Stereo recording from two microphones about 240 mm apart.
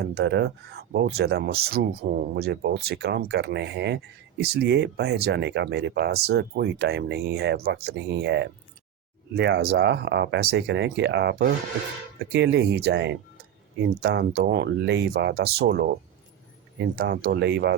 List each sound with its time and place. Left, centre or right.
0.0 s speech: right
17.0 s speech: right